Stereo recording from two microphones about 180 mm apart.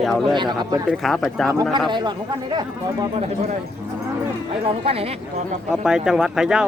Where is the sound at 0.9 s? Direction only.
Centre (ahead or behind).